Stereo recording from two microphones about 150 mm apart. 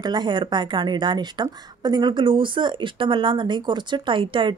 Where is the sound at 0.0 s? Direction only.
30° right (ahead or behind).